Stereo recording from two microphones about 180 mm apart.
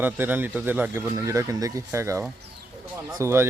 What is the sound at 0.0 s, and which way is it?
Speech, 10° right (ahead or behind).